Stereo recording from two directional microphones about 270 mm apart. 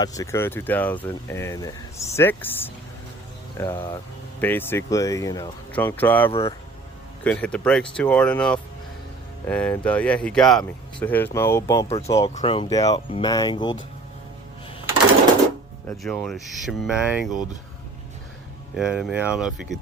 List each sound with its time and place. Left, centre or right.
0.0 s speech: centre
15.9 s speech: centre
18.8 s speech: centre